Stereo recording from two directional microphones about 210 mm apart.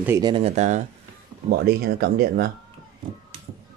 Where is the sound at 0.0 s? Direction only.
15° right (ahead or behind); by 0.8 s 35° right (ahead or behind).